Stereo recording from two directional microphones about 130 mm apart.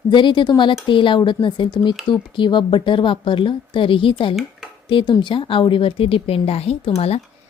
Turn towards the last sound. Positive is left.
turn(degrees=50)  # may be behind; listen again after turning